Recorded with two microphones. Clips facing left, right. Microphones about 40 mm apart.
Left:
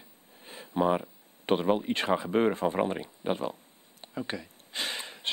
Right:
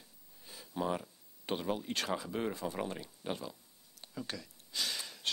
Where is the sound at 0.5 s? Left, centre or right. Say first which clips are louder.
Left 9 dB; left.